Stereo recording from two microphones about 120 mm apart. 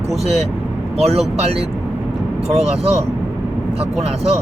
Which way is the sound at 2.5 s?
60° right (ahead or behind).